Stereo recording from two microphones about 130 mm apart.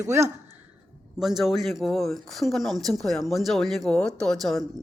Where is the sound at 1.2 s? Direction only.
Centre (ahead or behind).